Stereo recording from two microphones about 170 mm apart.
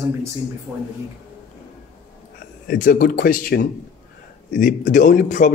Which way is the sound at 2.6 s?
55° left (ahead or behind).